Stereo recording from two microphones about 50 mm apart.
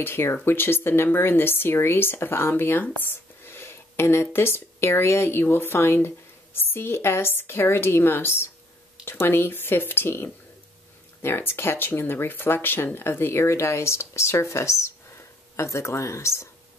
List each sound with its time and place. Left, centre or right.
0.0 s speech: left
2.5 s speech: left